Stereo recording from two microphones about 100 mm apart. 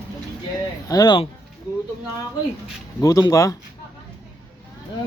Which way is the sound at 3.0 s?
35° left (ahead or behind).